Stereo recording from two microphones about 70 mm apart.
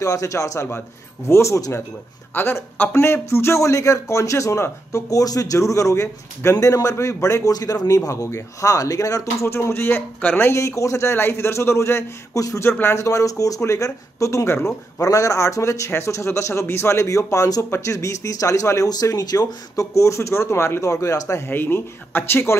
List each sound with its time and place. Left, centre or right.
0.0 s speech: left
0.7 s a man's voice: left
10.5 s a man's voice: left
12.9 s speech: left
15.0 s a man's voice: left
17.9 s speech: left
18.9 s speech: left
21.5 s a man's voice: left